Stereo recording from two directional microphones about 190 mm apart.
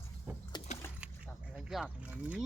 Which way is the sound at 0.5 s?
20° left (ahead or behind).